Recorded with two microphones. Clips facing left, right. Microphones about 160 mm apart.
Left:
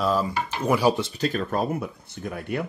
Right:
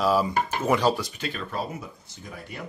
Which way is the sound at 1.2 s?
45° left (ahead or behind).